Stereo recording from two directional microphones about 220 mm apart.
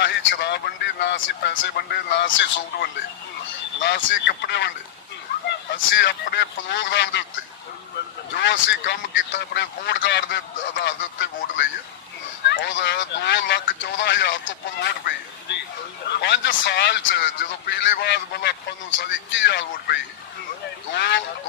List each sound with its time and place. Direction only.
0.0 s speech: 55° left (ahead or behind)
8.4 s speech: 50° left (ahead or behind)